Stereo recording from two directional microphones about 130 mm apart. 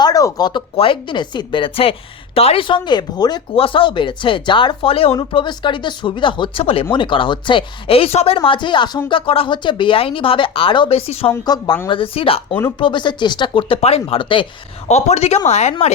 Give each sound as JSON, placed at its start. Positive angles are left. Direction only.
{"t": 0.0, "sound": "speech", "side_deg": 25}
{"t": 3.5, "sound": "speech", "side_deg": 45}
{"t": 8.4, "sound": "speech", "side_deg": 40}
{"t": 11.4, "sound": "speech", "side_deg": 35}
{"t": 12.8, "sound": "speech", "side_deg": 35}
{"t": 14.8, "sound": "speech", "side_deg": 60}